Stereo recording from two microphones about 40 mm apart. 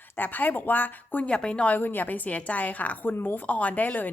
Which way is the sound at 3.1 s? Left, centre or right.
Left.